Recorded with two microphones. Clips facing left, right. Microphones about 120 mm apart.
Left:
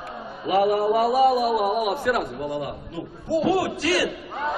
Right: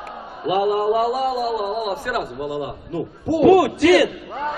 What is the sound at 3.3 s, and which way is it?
Speech, 90° right.